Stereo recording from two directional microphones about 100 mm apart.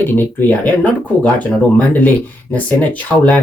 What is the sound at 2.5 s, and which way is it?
Speech, 15° left (ahead or behind).